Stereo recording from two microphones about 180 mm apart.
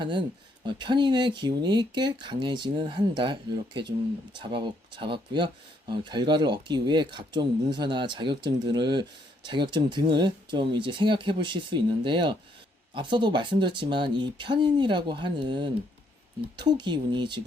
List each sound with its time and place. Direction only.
0.0 s speech: 25° right (ahead or behind)
4.4 s speech: 25° right (ahead or behind)